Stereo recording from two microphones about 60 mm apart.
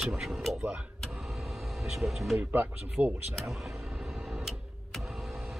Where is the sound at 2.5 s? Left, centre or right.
Right.